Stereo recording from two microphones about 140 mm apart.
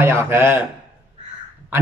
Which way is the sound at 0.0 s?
20° right (ahead or behind).